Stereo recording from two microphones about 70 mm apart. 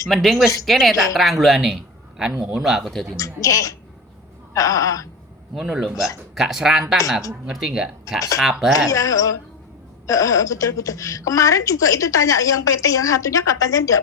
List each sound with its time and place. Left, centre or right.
0.1 s a man's voice: centre
3.2 s speech: left
5.5 s a man's voice: centre
8.9 s speech: left